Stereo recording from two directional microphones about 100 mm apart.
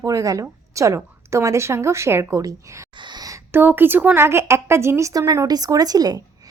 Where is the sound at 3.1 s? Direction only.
40° right (ahead or behind).